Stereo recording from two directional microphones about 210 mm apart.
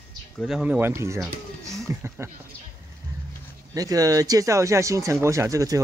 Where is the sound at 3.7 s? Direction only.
15° right (ahead or behind).